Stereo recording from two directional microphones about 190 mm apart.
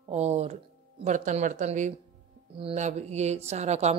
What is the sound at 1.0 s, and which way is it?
Speech, 40° right (ahead or behind).